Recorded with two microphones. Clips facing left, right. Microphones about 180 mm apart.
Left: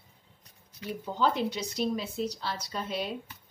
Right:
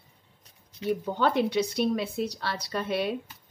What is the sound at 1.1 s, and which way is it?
Speech, 65° right (ahead or behind).